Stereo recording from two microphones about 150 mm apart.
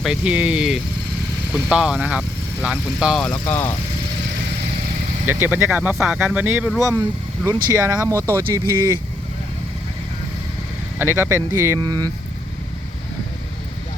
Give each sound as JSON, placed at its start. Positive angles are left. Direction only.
{"t": 0.0, "sound": "speech", "side_deg": -5}
{"t": 5.2, "sound": "speech", "side_deg": -15}
{"t": 10.9, "sound": "speech", "side_deg": -15}